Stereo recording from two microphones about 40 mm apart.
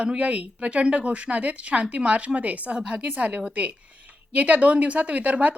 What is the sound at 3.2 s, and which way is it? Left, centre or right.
A woman's voice, right.